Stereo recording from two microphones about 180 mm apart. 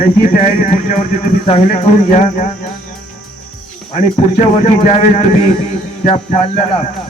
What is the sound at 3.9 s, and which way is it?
Speech, 35° left (ahead or behind).